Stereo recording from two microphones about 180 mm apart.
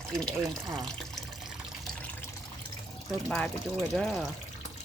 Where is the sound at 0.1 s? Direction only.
5° left (ahead or behind).